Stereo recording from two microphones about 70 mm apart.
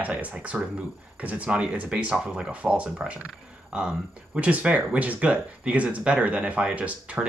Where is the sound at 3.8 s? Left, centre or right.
Right.